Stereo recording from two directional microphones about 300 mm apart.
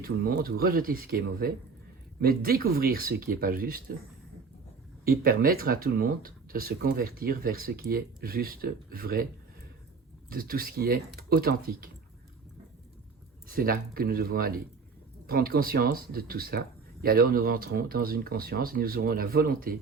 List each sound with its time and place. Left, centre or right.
0.0 s speech: right
5.0 s speech: right
10.2 s speech: right
13.5 s speech: right